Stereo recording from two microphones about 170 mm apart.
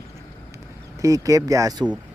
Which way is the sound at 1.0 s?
20° right (ahead or behind).